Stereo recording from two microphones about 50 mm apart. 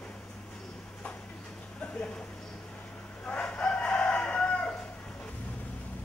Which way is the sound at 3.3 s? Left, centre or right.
Left.